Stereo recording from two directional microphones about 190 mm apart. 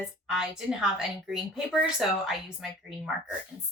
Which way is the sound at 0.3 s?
5° right (ahead or behind).